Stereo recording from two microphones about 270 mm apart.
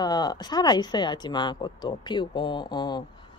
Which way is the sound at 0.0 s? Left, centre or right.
Centre.